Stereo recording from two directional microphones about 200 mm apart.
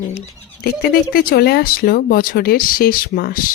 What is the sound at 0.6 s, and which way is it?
Speech, 50° left (ahead or behind).